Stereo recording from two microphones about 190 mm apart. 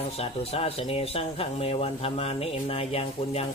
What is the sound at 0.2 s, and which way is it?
Speech, 30° left (ahead or behind).